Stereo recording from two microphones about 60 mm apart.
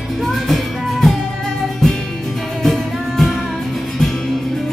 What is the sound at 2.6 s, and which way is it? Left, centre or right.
Music, centre.